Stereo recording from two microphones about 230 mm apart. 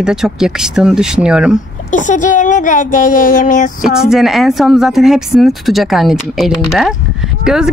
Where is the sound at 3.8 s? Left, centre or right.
Centre.